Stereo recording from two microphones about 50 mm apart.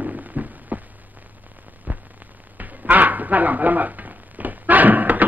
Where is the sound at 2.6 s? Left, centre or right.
Right.